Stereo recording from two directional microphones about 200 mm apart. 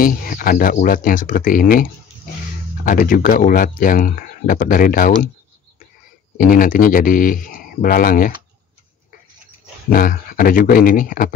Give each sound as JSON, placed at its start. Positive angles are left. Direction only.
{"t": 0.0, "sound": "speech", "side_deg": 45}
{"t": 6.3, "sound": "speech", "side_deg": 45}
{"t": 9.8, "sound": "speech", "side_deg": 45}